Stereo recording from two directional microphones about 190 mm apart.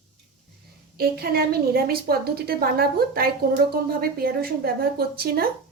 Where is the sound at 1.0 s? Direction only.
55° right (ahead or behind).